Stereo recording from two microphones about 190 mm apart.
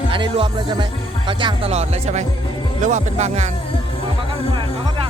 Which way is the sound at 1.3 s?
25° right (ahead or behind).